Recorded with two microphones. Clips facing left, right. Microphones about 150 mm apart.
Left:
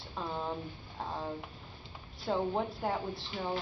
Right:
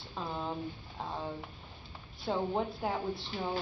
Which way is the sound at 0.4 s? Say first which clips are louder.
Even; centre (ahead or behind).